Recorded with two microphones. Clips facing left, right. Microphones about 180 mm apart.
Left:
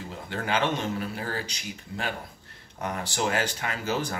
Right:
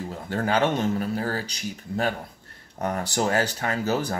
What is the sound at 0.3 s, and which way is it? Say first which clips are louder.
Speech: right 4 dB; 40° right (ahead or behind).